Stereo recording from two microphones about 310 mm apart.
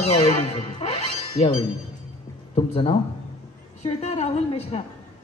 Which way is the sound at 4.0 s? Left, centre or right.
Centre.